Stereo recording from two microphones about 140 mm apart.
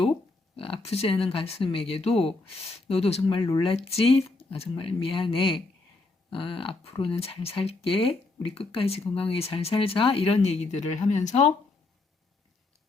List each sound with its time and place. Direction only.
0.5 s speech: 40° left (ahead or behind); by 11.5 s 55° left (ahead or behind)